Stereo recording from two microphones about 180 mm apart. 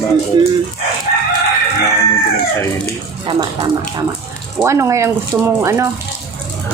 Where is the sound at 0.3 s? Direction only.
25° right (ahead or behind).